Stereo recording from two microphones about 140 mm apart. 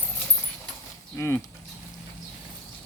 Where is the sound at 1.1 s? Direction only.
15° left (ahead or behind).